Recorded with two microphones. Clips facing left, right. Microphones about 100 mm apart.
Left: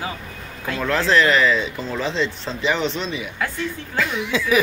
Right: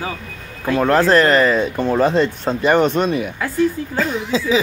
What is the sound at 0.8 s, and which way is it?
Speech, 45° right (ahead or behind).